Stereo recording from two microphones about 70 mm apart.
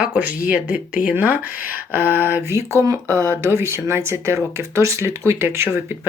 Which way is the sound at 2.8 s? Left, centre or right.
Right.